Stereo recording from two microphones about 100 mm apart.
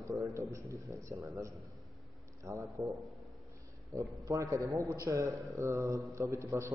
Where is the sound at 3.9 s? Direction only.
35° right (ahead or behind).